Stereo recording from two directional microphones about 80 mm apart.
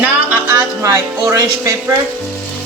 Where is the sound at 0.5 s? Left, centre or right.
Right.